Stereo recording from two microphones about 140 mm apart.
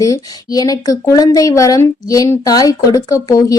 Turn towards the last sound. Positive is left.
turn(degrees=25)  # may be behind; listen again after turning